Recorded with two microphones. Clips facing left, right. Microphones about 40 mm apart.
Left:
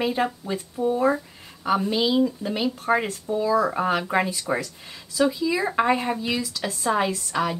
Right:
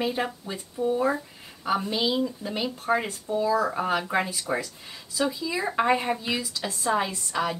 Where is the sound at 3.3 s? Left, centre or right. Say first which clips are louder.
Left 2 dB; centre.